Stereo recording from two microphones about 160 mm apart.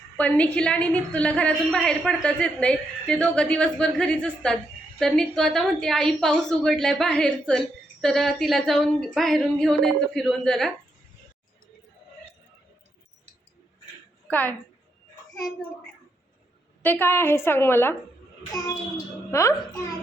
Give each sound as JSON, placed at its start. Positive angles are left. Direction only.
{"t": 0.2, "sound": "a woman's voice", "side_deg": 10}
{"t": 14.3, "sound": "a woman's voice", "side_deg": 10}
{"t": 16.8, "sound": "a woman's voice", "side_deg": 10}